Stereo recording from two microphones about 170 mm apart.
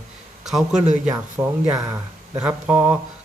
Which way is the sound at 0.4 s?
5° right (ahead or behind).